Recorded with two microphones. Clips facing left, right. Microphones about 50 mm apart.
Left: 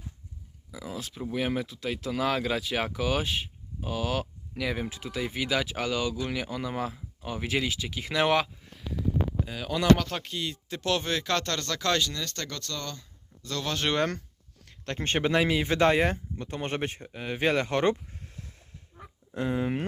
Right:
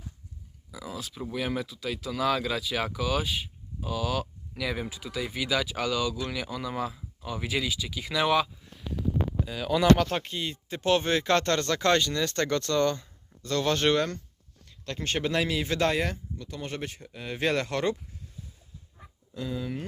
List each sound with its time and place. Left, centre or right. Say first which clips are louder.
0.7 s a sound: left 1 dB; centre
1.3 s speech: left 2 dB; left
1.6 s speech: left 1 dB; left
4.9 s speech: left 1 dB; left
9.6 s speech: right 2 dB; centre; by 13.1 s right
13.4 s speech: right 5 dB; centre
14.7 s speech: left 2 dB; left
16.1 s speech: left 3 dB; left
17.1 s speech: left 1 dB; centre
18.1 s a sound: left 1 dB; left
18.9 s a sound: left 5 dB; left